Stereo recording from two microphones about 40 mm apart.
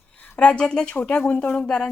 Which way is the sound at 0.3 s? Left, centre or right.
Left.